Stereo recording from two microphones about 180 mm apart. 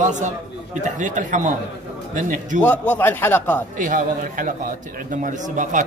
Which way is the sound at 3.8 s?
45° right (ahead or behind).